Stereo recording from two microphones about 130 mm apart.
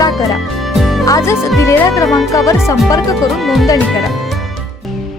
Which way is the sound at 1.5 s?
20° left (ahead or behind).